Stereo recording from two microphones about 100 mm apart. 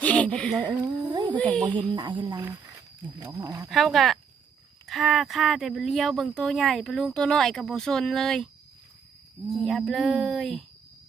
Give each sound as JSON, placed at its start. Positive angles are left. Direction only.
{"t": 0.0, "sound": "a sound", "side_deg": 15}
{"t": 0.6, "sound": "speech", "side_deg": -45}
{"t": 1.4, "sound": "speech", "side_deg": 10}
{"t": 1.6, "sound": "speech", "side_deg": -50}
{"t": 3.4, "sound": "speech", "side_deg": -40}
{"t": 3.7, "sound": "speech", "side_deg": 0}
{"t": 9.5, "sound": "speech", "side_deg": 5}